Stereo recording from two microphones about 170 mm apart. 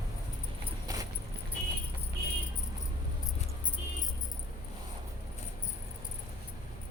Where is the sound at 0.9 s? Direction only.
20° right (ahead or behind).